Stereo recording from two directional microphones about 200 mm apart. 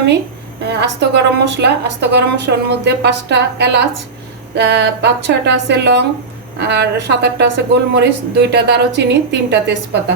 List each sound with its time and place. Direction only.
0.6 s a woman's voice: 55° right (ahead or behind)